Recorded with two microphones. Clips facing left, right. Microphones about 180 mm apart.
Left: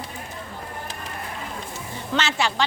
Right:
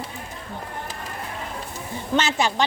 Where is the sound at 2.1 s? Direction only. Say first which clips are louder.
Right 2 dB; 15° right (ahead or behind).